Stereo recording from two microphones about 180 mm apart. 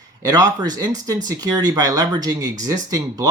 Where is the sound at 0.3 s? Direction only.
20° right (ahead or behind).